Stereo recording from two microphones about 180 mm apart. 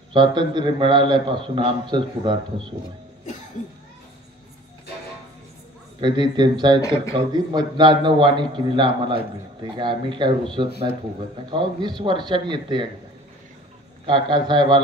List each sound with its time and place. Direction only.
0.1 s a man's voice: 25° right (ahead or behind)
5.9 s a man's voice: 25° right (ahead or behind)
14.0 s a man's voice: 25° right (ahead or behind)